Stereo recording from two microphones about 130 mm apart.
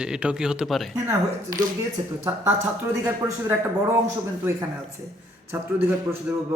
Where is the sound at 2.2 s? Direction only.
20° right (ahead or behind).